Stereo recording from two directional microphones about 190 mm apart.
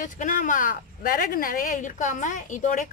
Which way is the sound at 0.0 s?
45° left (ahead or behind).